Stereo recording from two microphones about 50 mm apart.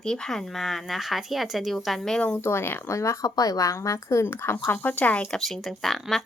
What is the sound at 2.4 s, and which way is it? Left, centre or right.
Speech, left.